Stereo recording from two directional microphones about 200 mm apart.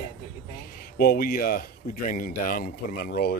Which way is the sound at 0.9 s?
50° left (ahead or behind).